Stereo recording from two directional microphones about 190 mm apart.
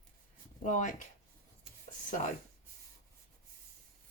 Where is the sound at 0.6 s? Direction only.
40° left (ahead or behind).